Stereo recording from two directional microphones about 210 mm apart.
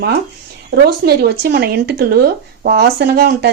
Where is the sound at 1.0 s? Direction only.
50° right (ahead or behind).